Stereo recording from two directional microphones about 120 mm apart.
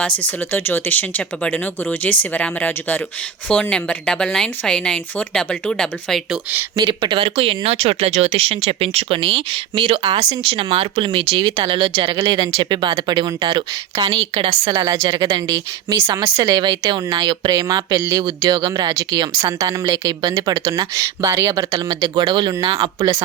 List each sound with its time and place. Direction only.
0.5 s speech: 15° left (ahead or behind)
6.7 s speech: 40° right (ahead or behind)
14.3 s speech: 45° right (ahead or behind)